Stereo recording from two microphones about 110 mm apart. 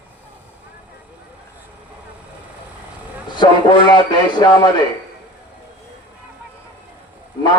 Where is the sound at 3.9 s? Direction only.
40° left (ahead or behind).